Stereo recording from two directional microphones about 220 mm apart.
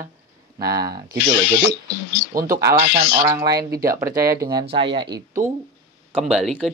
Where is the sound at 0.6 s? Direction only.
15° right (ahead or behind).